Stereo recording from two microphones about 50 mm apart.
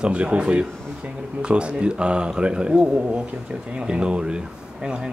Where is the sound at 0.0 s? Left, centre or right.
Right.